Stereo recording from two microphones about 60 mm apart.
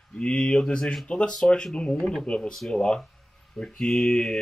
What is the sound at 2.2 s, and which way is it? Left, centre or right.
Speech, centre.